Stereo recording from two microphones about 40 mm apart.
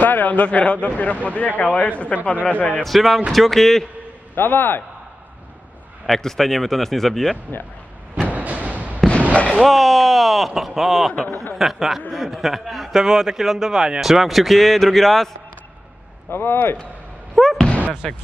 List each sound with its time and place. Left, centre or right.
0.0 s a man's voice: left
2.8 s speech: centre
4.4 s speech: left
6.0 s speech: centre
8.3 s a sound: right
9.3 s fireworks: left
9.6 s a man's voice: centre
14.0 s speech: centre
16.3 s speech: left
17.4 s slam: centre
18.0 s speech: centre